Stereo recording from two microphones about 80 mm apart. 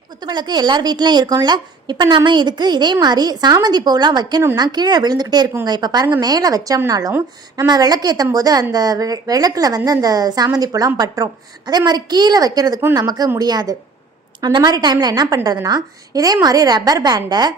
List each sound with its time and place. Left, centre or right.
0.2 s a woman's voice: right
11.9 s a woman's voice: right